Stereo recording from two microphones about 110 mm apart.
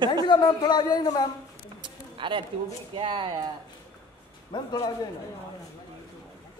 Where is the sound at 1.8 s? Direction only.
50° right (ahead or behind).